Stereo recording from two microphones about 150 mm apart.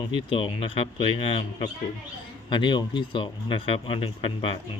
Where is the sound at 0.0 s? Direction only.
30° left (ahead or behind).